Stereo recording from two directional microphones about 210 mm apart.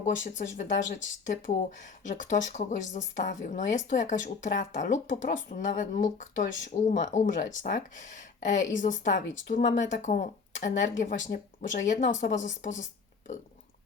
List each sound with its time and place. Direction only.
0.3 s speech: 35° left (ahead or behind)